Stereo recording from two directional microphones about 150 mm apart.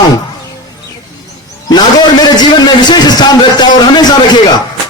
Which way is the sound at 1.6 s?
25° left (ahead or behind).